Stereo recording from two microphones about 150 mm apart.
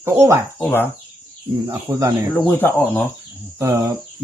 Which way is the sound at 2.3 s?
10° left (ahead or behind).